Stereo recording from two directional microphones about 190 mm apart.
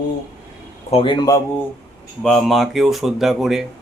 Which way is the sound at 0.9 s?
25° left (ahead or behind).